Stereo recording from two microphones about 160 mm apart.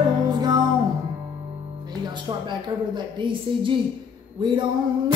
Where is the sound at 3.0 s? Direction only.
30° right (ahead or behind).